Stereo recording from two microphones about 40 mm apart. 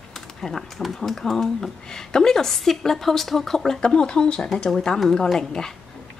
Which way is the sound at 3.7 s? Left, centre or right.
Left.